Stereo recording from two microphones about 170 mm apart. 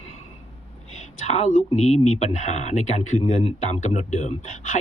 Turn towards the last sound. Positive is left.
turn(degrees=40)  # may be behind; listen again after turning